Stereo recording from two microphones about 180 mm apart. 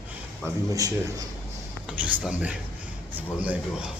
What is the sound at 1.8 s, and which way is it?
Speech, 5° right (ahead or behind).